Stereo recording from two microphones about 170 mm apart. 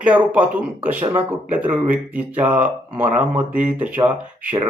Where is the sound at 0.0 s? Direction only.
10° right (ahead or behind).